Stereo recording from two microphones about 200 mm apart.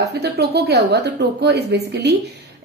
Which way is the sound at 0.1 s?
55° right (ahead or behind).